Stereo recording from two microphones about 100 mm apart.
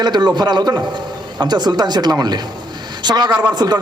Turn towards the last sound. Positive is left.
turn(degrees=-45)  # may be behind; listen again after turning